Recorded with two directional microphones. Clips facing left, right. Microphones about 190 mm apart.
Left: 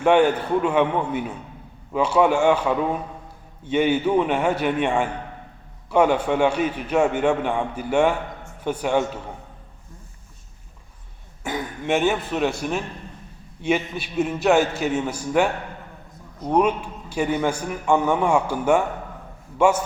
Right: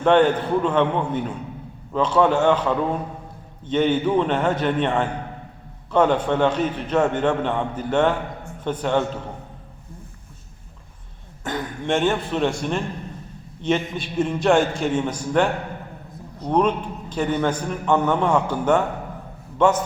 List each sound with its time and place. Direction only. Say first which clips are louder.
0.0 s a man's voice: right 1 dB; 10° left (ahead or behind)
11.4 s a man's voice: even; 10° left (ahead or behind)